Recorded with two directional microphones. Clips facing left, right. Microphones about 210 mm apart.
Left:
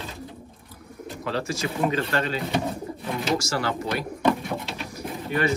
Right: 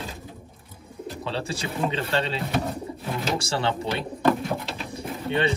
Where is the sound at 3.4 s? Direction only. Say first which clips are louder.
Right 1 dB; 30° right (ahead or behind).